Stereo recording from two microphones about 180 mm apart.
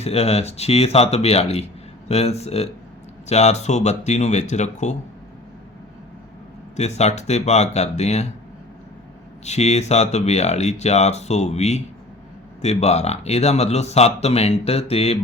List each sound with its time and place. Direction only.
0.0 s speech: 35° left (ahead or behind)
6.7 s speech: 40° left (ahead or behind)
9.4 s speech: 40° left (ahead or behind)